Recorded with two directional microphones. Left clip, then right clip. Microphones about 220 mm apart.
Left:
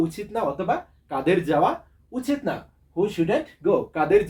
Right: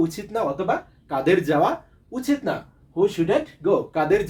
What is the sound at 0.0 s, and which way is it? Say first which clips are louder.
Speech: right 1 dB; 20° right (ahead or behind).